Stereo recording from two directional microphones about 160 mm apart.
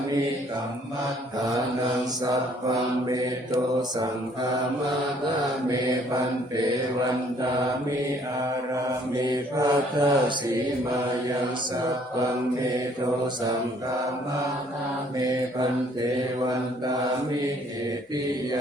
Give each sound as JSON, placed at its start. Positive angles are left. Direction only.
{"t": 2.2, "sound": "mantra", "side_deg": -20}
{"t": 9.2, "sound": "mantra", "side_deg": -25}